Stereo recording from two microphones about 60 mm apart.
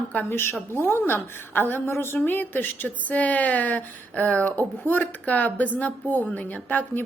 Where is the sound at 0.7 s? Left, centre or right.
Left.